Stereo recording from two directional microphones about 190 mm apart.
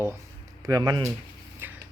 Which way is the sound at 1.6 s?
10° right (ahead or behind).